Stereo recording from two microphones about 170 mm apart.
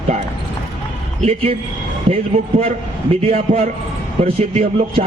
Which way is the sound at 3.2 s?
35° right (ahead or behind).